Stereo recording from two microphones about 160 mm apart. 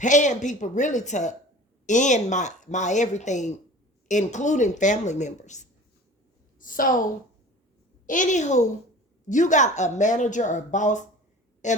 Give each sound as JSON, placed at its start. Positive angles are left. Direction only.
{"t": 0.0, "sound": "a woman's voice", "side_deg": 50}
{"t": 6.6, "sound": "a woman's voice", "side_deg": 60}
{"t": 8.0, "sound": "a woman's voice", "side_deg": 55}